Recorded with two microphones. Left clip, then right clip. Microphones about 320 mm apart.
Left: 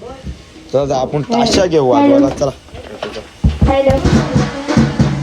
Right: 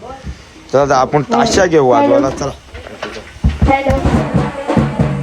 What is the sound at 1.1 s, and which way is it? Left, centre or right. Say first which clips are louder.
Speech: right 2 dB; centre.